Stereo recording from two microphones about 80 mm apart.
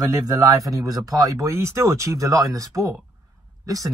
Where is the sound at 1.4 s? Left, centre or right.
Right.